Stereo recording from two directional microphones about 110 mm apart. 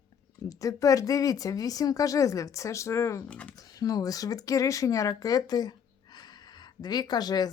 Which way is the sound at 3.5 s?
35° left (ahead or behind).